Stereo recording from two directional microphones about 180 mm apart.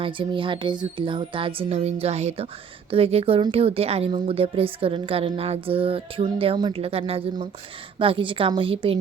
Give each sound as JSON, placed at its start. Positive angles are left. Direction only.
{"t": 0.0, "sound": "speech", "side_deg": -30}